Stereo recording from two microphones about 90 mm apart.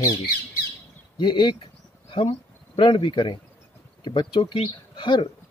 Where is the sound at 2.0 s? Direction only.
75° left (ahead or behind).